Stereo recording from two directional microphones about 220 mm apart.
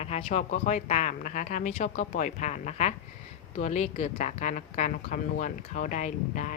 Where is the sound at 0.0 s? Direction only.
30° left (ahead or behind).